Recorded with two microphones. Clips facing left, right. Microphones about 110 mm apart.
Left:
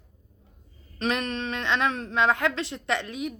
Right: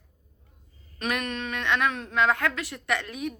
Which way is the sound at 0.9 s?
30° left (ahead or behind).